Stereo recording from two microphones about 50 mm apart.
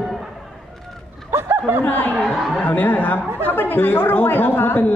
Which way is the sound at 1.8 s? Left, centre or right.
Left.